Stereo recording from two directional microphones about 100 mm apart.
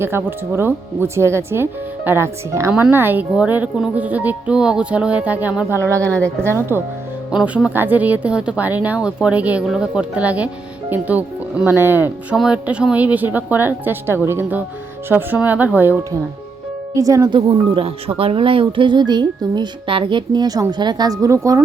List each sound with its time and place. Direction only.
0.0 s speech: 25° right (ahead or behind)
5.7 s speech: 30° right (ahead or behind)
6.1 s a woman's voice: 15° left (ahead or behind)
7.3 s speech: 10° right (ahead or behind)
16.9 s speech: 35° right (ahead or behind)
17.3 s speech: 65° right (ahead or behind); by 21.6 s 30° right (ahead or behind)